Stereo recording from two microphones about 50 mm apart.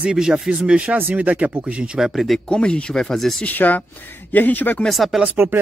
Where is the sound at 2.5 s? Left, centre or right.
Centre.